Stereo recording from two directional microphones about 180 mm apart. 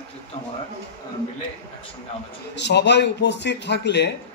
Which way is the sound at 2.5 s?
70° left (ahead or behind).